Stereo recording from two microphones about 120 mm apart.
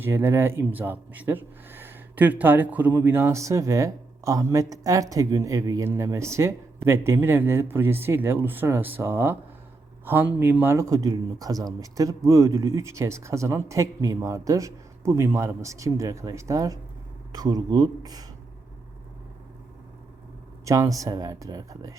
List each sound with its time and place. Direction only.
0.0 s speech: 20° right (ahead or behind)
20.7 s speech: 25° right (ahead or behind)